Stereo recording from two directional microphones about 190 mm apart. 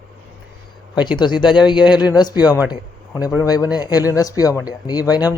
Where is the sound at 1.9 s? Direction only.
5° right (ahead or behind).